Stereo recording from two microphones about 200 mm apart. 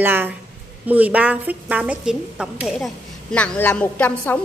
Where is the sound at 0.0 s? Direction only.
10° right (ahead or behind).